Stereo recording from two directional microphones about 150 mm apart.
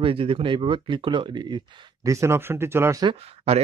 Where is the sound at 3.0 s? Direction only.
40° right (ahead or behind).